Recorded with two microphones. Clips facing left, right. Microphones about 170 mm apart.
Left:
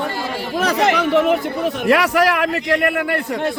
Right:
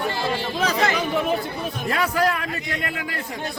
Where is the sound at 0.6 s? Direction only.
80° left.